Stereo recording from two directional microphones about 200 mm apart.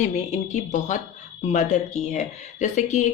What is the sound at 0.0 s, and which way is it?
Speech, 35° left (ahead or behind).